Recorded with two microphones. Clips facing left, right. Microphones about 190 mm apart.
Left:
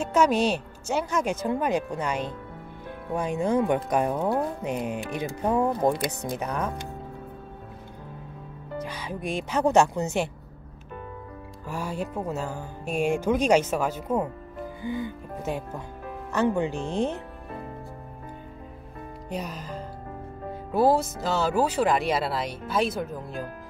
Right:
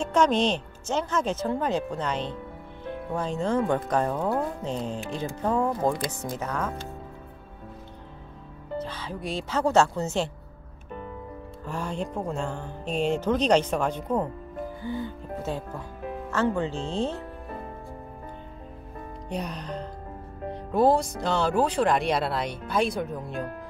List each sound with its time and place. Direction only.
0.0 s speech: 5° left (ahead or behind)
8.7 s speech: 15° left (ahead or behind)
11.6 s speech: 10° left (ahead or behind)
19.2 s speech: 5° left (ahead or behind)